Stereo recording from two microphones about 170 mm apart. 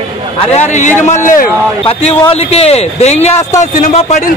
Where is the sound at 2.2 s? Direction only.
35° left (ahead or behind).